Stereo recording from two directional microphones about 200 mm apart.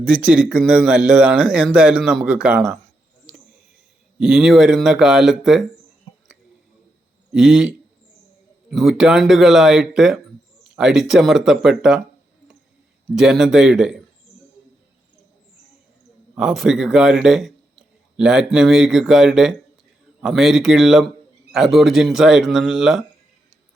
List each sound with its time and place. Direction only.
0.1 s speech: 5° right (ahead or behind)
4.2 s speech: centre (ahead or behind)
7.3 s speech: centre (ahead or behind)
13.1 s speech: centre (ahead or behind)
16.3 s a man's voice: centre (ahead or behind)